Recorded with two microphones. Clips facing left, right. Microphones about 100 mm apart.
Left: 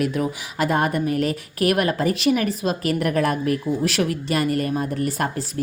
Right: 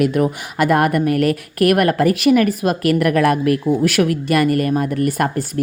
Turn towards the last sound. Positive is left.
turn(degrees=-55)  # may be behind; listen again after turning